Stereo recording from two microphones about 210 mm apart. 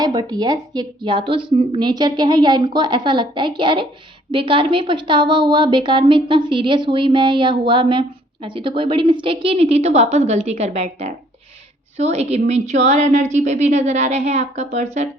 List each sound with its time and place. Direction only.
0.0 s a woman's voice: 20° right (ahead or behind)